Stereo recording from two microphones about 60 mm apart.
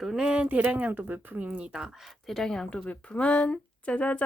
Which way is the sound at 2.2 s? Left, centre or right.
Centre.